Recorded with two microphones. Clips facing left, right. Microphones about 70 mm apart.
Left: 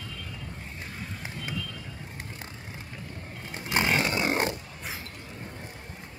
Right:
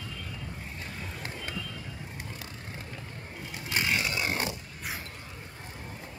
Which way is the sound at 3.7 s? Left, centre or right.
Left.